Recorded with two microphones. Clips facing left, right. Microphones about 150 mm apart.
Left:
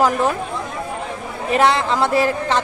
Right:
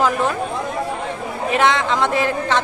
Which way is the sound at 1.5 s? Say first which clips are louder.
Left 1 dB; 35° left (ahead or behind).